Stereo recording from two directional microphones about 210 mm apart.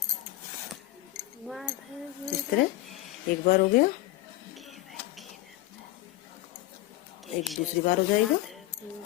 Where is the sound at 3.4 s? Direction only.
40° left (ahead or behind).